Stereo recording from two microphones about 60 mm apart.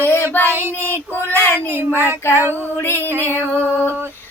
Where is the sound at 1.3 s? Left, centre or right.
Right.